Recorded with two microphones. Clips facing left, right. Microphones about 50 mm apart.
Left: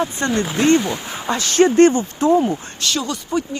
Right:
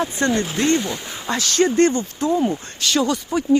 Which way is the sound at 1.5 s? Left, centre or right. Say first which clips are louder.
Left 5 dB; left.